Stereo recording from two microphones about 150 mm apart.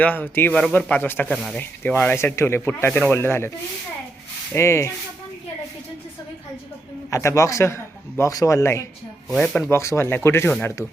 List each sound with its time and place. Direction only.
0.0 s speech: 10° left (ahead or behind)
1.3 s speech: centre (ahead or behind)
1.5 s speech: 10° left (ahead or behind)
4.5 s speech: 20° left (ahead or behind)
7.1 s a man's voice: 20° left (ahead or behind)
9.3 s speech: 5° left (ahead or behind)
9.6 s speech: 20° left (ahead or behind)